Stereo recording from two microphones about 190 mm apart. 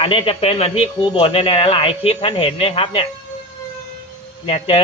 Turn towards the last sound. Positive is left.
turn(degrees=30)  # may be behind; listen again after turning